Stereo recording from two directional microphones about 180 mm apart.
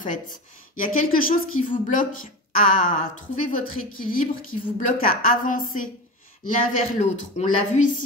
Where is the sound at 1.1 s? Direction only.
50° left (ahead or behind).